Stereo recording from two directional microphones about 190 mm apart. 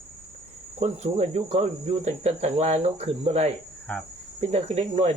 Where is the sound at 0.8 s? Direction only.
35° right (ahead or behind).